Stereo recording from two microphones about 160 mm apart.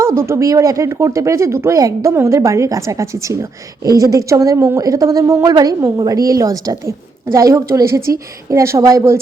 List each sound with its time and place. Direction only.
0.0 s speech: 15° right (ahead or behind)